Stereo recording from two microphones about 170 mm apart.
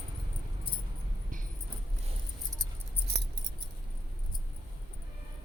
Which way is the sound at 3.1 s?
70° right (ahead or behind).